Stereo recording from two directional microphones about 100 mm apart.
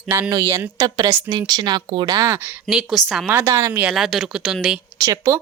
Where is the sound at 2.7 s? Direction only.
Centre (ahead or behind).